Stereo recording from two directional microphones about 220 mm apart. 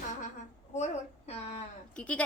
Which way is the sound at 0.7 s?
30° left (ahead or behind).